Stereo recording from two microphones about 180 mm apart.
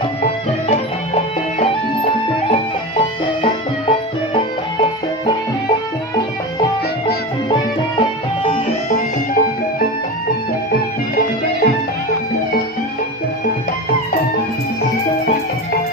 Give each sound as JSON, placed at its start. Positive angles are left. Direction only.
{"t": 0.7, "sound": "music", "side_deg": 40}
{"t": 3.4, "sound": "music", "side_deg": 30}
{"t": 8.9, "sound": "music", "side_deg": 55}